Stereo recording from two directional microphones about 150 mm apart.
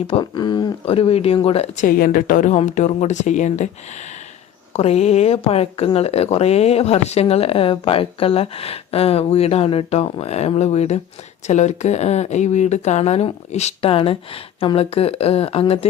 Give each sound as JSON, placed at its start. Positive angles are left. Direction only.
{"t": 0.1, "sound": "speech", "side_deg": 30}